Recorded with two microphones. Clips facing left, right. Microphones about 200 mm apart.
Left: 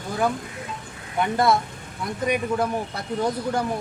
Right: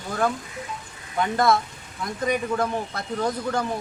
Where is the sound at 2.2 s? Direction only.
10° left (ahead or behind).